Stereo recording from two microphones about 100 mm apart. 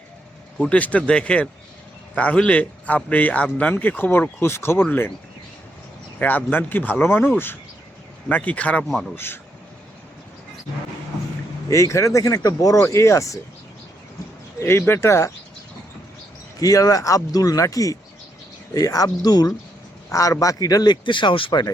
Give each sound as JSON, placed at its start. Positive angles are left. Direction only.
{"t": 0.6, "sound": "a man's voice", "side_deg": 15}
{"t": 6.1, "sound": "speech", "side_deg": 15}
{"t": 8.3, "sound": "a man's voice", "side_deg": 15}
{"t": 11.7, "sound": "speech", "side_deg": 30}
{"t": 14.6, "sound": "speech", "side_deg": 25}
{"t": 16.6, "sound": "a man's voice", "side_deg": 35}